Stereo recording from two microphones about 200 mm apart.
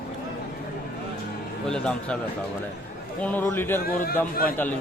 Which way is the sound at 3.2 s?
10° left (ahead or behind).